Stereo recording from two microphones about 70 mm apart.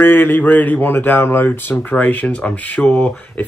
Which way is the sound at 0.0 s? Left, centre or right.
Left.